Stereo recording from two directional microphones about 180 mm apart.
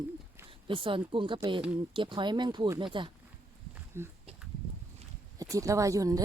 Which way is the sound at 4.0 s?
15° right (ahead or behind).